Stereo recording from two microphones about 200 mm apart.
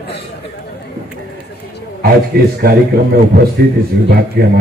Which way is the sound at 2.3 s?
50° right (ahead or behind).